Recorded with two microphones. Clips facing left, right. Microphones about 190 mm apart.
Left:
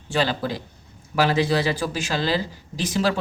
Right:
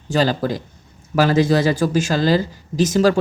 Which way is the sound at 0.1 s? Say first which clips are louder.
Right 5 dB; 40° right (ahead or behind).